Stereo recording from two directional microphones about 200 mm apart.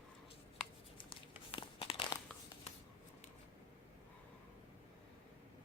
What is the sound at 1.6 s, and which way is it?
Crumpling, 25° left (ahead or behind).